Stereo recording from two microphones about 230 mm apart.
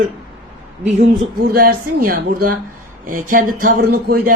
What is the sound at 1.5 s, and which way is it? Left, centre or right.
Speech, right.